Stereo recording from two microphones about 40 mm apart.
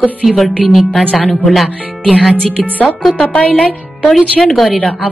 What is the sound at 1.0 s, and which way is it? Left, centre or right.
Speech, left.